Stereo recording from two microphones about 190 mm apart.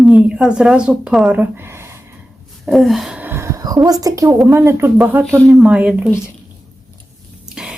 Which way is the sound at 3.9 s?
20° right (ahead or behind).